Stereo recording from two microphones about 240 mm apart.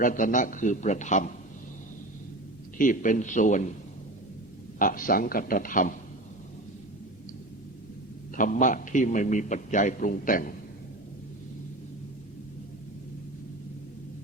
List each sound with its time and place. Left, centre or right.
0.0 s a man's voice: left
2.7 s a man's voice: left
4.8 s a man's voice: left
8.4 s a man's voice: left